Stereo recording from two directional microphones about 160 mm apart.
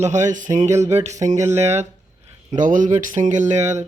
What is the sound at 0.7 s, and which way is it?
Speech, 15° right (ahead or behind).